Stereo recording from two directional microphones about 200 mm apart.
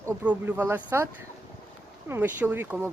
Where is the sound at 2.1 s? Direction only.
10° right (ahead or behind).